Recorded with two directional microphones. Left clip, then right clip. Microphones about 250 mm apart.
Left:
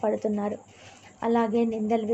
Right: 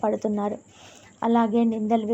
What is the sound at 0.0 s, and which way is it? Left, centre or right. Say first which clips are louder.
A woman's voice: right 2 dB; centre.